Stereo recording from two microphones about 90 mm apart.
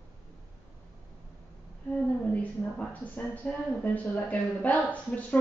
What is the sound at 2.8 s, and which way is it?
Speech, 15° left (ahead or behind).